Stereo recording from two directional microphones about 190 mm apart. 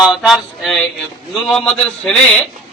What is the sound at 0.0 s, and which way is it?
A man's voice, centre (ahead or behind).